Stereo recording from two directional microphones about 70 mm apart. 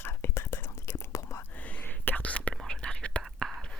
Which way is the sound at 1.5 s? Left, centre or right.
Left.